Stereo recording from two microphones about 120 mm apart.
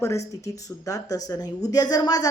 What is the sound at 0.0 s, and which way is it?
A woman's voice, 25° left (ahead or behind).